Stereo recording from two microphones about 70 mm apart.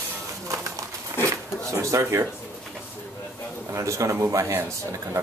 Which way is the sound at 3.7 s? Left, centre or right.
Right.